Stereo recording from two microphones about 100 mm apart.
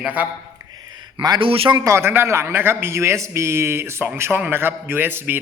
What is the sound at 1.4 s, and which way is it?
Speech, 65° right (ahead or behind).